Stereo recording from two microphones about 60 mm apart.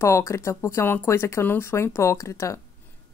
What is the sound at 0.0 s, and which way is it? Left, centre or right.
Speech, left.